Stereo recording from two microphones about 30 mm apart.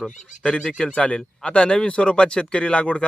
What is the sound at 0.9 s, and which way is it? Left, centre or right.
Speech, left.